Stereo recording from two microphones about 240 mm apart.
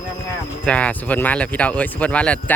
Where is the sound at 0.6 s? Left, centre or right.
Centre.